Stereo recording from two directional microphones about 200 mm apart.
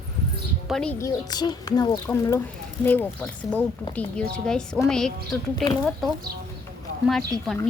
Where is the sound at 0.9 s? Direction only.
20° left (ahead or behind); by 5.6 s centre (ahead or behind).